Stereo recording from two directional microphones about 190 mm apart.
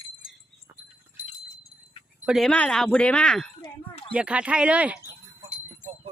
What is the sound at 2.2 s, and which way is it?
Speech, centre (ahead or behind).